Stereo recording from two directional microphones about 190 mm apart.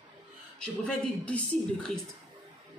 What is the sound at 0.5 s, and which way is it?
Speech, 5° left (ahead or behind).